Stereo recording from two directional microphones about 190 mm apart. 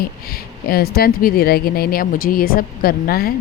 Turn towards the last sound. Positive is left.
turn(degrees=50)  # may be behind; listen again after turning